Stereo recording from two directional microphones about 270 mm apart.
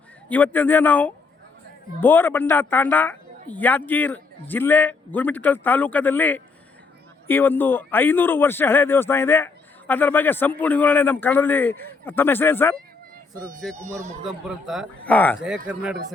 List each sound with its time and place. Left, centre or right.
0.3 s speech: centre